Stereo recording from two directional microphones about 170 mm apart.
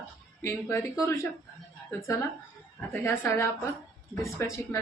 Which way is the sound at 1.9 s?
20° left (ahead or behind).